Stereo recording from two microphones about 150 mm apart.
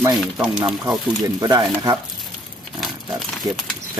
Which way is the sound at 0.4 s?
5° right (ahead or behind).